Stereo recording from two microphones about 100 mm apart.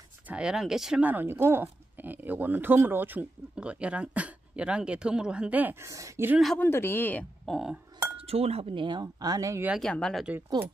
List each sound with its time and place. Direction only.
0.3 s speech: 10° right (ahead or behind)
1.0 s speech: 20° right (ahead or behind)
5.9 s speech: 30° right (ahead or behind)
6.6 s speech: 25° left (ahead or behind)
7.4 s speech: centre (ahead or behind)
8.2 s speech: 85° right
8.8 s speech: 45° right (ahead or behind)
9.8 s speech: 5° left (ahead or behind)